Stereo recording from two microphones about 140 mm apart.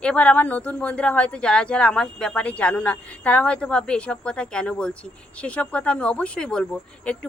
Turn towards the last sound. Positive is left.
turn(degrees=10)  # may be behind; listen again after turning